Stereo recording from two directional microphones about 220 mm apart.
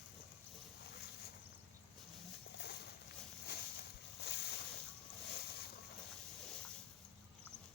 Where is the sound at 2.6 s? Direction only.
45° left (ahead or behind).